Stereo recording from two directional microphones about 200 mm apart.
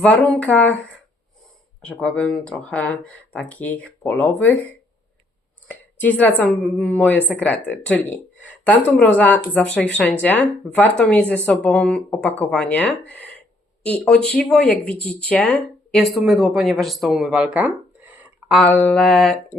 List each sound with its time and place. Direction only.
0.0 s a woman's voice: 5° left (ahead or behind)
1.8 s a woman's voice: 5° left (ahead or behind)
5.6 s a woman's voice: 10° left (ahead or behind); by 18.6 s 10° right (ahead or behind)
18.6 s speech: 10° left (ahead or behind)